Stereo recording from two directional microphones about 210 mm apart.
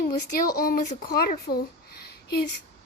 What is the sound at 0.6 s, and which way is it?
A woman's voice, 45° left (ahead or behind).